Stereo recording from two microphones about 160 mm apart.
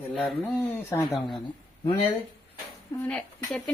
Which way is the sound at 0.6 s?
15° left (ahead or behind).